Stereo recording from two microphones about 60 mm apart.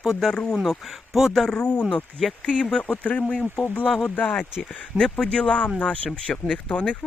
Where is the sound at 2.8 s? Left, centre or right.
Left.